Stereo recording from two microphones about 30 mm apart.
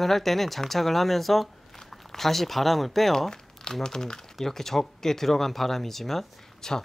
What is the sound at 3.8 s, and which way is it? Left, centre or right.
Speech, left.